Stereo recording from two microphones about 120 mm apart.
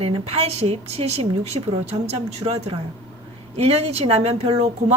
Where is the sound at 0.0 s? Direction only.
55° right (ahead or behind).